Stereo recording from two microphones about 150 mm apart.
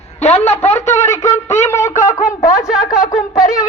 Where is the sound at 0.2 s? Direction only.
45° left (ahead or behind).